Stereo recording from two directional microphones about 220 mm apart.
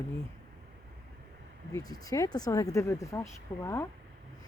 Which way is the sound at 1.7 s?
15° left (ahead or behind).